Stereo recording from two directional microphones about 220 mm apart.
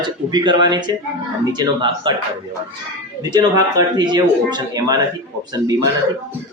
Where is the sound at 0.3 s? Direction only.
20° right (ahead or behind).